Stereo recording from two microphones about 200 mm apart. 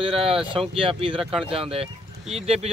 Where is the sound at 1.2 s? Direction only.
5° right (ahead or behind).